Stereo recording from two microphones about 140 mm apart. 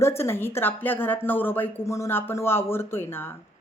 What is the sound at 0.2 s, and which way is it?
A woman's voice, 15° left (ahead or behind).